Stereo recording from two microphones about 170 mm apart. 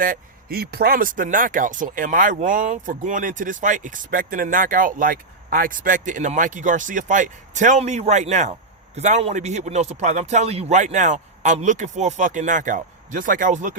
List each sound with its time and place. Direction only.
0.0 s speech: 60° right (ahead or behind)